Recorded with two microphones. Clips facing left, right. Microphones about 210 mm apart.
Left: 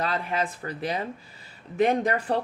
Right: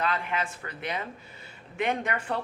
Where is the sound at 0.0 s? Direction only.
35° left (ahead or behind).